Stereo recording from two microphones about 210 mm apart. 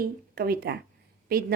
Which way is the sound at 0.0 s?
45° right (ahead or behind).